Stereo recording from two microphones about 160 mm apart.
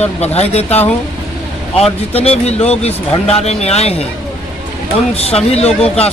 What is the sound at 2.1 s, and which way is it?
Speech, 40° left (ahead or behind).